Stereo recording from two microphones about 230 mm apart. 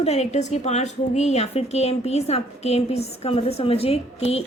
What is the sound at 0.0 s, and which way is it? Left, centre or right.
A woman's voice, left.